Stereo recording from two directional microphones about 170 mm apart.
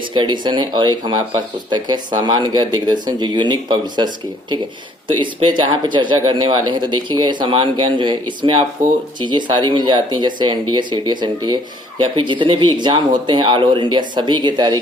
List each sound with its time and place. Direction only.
0.1 s speech: 25° right (ahead or behind)